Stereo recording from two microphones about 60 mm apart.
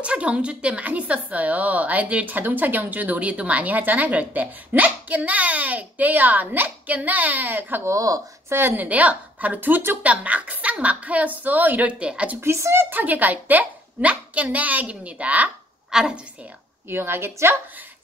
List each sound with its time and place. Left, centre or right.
0.0 s a woman's voice: right
7.8 s speech: right
8.5 s a woman's voice: right
8.8 s a woman's voice: right
12.4 s speech: right
12.9 s a woman's voice: right
15.9 s a woman's voice: centre
16.9 s a woman's voice: right